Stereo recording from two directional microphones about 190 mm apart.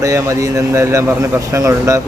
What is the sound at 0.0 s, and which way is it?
Speech, 15° right (ahead or behind).